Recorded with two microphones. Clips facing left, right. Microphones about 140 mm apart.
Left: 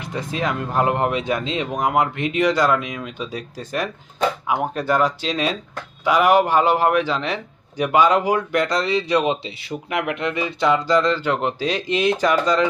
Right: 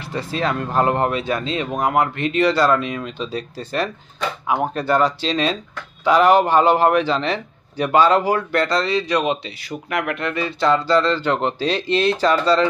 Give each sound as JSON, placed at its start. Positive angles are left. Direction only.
{"t": 0.0, "sound": "speech", "side_deg": 15}